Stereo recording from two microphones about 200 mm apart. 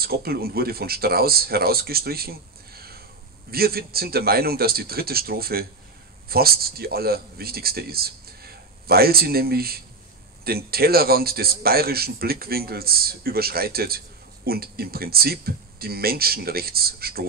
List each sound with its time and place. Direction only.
0.0 s a man's voice: 50° right (ahead or behind)